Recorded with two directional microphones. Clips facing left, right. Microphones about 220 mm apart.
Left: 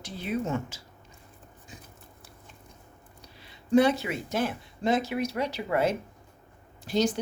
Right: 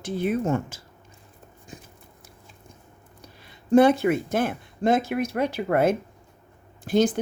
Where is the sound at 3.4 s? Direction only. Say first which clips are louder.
Right 5 dB; 50° right (ahead or behind).